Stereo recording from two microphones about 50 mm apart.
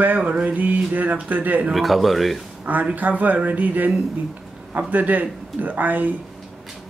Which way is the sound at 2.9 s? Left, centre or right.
Right.